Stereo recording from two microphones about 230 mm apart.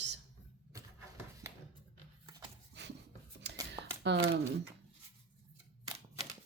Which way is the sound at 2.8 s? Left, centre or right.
Right.